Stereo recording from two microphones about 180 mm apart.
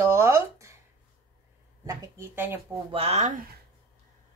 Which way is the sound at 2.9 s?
35° right (ahead or behind).